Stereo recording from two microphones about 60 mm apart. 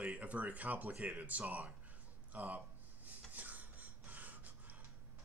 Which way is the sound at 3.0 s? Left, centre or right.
Right.